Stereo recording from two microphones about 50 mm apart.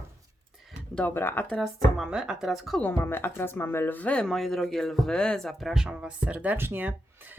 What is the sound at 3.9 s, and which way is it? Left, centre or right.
Speech, left.